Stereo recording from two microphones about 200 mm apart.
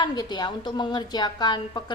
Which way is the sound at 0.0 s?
20° left (ahead or behind).